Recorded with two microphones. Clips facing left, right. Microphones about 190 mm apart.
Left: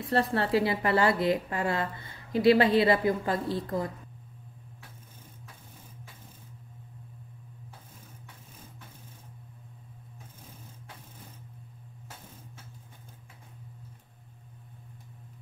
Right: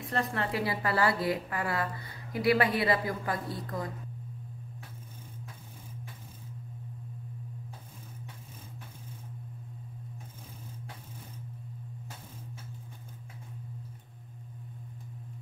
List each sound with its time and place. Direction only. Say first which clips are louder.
0.0 s a woman's voice: left 5 dB; 30° left (ahead or behind)